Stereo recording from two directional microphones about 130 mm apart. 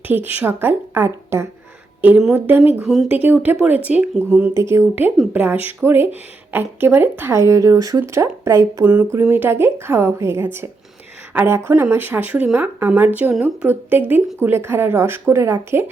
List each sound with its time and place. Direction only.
0.1 s a woman's voice: 15° right (ahead or behind)
2.8 s speech: centre (ahead or behind)
3.1 s speech: 15° right (ahead or behind)